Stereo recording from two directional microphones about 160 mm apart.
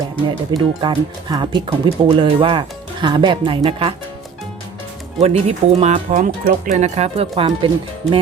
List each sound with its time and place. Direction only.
0.5 s speech: 30° right (ahead or behind)
5.2 s speech: 40° right (ahead or behind)